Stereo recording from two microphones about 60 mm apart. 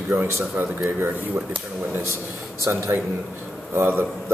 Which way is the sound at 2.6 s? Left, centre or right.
Right.